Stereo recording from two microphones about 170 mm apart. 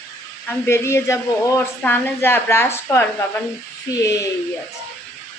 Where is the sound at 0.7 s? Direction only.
15° left (ahead or behind).